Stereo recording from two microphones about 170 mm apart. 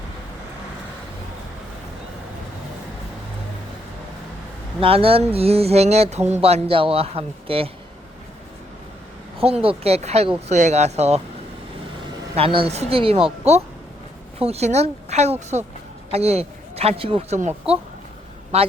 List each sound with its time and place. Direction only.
4.8 s speech: 35° right (ahead or behind)
9.4 s speech: 35° right (ahead or behind)
12.3 s speech: 30° right (ahead or behind)
18.5 s speech: 35° right (ahead or behind)